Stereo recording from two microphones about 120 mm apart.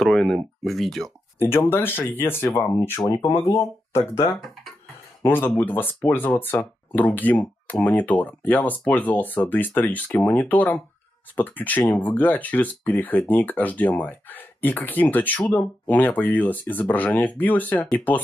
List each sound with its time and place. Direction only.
0.0 s speech: 5° left (ahead or behind)
1.7 s speech: 20° left (ahead or behind)